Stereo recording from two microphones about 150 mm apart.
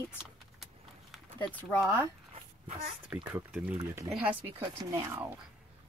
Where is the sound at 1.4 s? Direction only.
10° left (ahead or behind).